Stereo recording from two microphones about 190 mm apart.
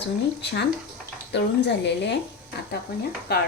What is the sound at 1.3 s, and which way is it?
Speech, 65° left (ahead or behind).